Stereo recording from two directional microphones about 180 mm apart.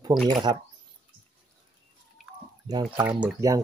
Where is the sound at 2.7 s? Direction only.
20° right (ahead or behind).